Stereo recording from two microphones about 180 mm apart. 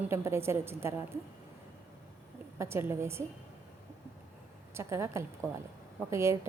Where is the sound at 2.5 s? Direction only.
15° right (ahead or behind).